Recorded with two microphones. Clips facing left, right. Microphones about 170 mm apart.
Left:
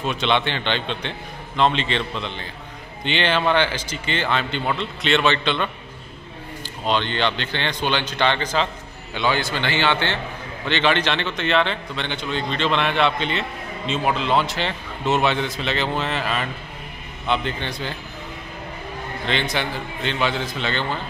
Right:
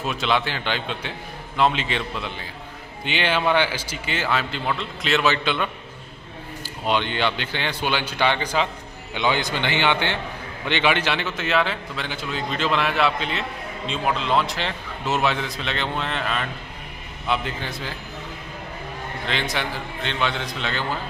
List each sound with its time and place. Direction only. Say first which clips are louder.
0.0 s a man's voice: left 2 dB; centre (ahead or behind)
6.9 s a man's voice: left 1 dB; 10° right (ahead or behind)
19.2 s a man's voice: left 3 dB; centre (ahead or behind)